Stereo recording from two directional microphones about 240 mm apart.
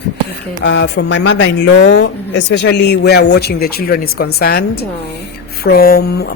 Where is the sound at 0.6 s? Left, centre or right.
Left.